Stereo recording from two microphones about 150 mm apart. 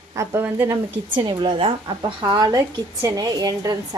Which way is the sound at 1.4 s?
35° right (ahead or behind).